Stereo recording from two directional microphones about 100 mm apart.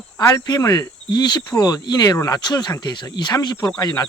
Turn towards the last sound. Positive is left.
turn(degrees=40)  # may be behind; listen again after turning